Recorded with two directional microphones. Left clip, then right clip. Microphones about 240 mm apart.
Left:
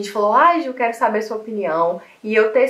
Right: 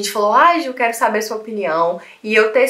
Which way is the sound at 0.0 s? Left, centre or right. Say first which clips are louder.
Right 2 dB; centre.